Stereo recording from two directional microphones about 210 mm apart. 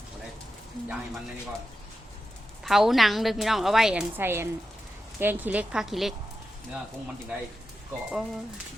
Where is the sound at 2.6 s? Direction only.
Centre (ahead or behind).